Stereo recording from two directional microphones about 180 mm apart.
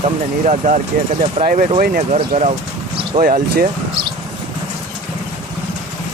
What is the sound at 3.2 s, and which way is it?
Speech, 50° right (ahead or behind).